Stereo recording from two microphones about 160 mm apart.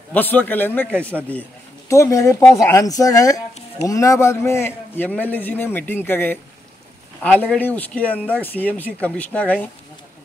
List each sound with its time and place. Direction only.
0.1 s a man's voice: 10° left (ahead or behind)